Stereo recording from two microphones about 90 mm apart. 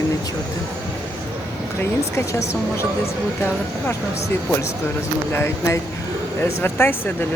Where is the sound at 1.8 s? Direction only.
30° left (ahead or behind).